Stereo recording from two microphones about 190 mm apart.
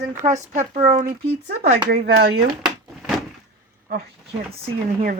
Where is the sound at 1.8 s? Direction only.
55° right (ahead or behind).